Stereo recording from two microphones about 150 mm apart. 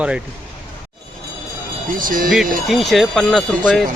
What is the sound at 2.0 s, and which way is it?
Speech, 70° right (ahead or behind).